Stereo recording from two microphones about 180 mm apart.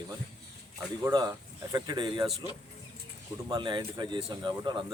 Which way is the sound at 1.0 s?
20° right (ahead or behind).